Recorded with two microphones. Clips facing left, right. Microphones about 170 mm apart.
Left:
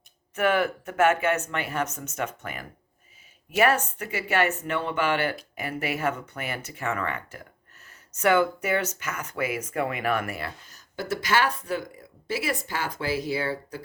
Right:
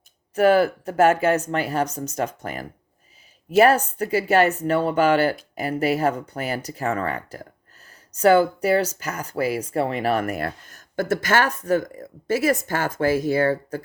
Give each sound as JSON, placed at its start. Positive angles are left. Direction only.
{"t": 0.3, "sound": "speech", "side_deg": -35}